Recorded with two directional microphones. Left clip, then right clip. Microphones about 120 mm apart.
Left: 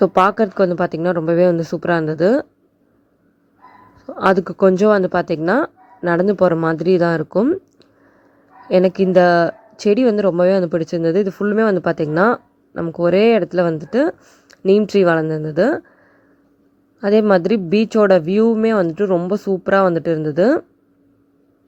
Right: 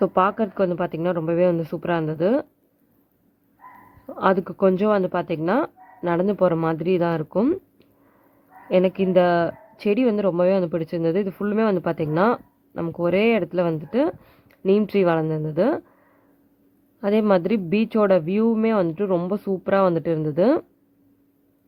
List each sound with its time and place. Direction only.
0.0 s speech: 45° left (ahead or behind)
4.0 s speech: 40° left (ahead or behind)
8.7 s speech: 40° left (ahead or behind)
17.0 s speech: 35° left (ahead or behind)